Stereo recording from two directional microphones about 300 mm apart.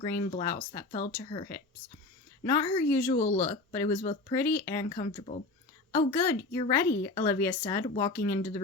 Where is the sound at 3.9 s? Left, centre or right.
Left.